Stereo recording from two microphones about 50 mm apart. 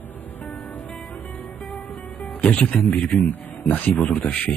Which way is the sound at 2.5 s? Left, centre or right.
Left.